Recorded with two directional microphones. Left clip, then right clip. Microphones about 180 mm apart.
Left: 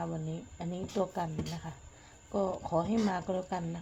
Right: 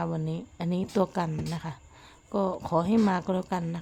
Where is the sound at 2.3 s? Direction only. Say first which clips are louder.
Right 4 dB; 40° right (ahead or behind).